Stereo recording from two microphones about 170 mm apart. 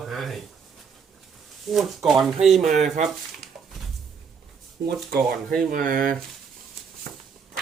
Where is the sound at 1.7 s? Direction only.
Centre (ahead or behind).